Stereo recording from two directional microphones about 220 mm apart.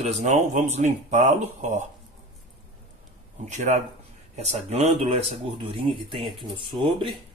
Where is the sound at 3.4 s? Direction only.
30° right (ahead or behind).